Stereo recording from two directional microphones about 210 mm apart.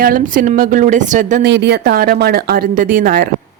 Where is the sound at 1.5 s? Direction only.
55° right (ahead or behind).